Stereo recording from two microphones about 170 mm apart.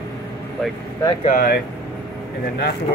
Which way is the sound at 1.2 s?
50° left (ahead or behind).